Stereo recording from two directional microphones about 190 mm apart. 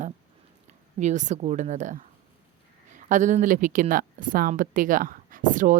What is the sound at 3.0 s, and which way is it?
Speech, 40° right (ahead or behind).